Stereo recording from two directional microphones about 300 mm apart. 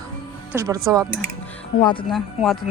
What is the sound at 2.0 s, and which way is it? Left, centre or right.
Speech, centre.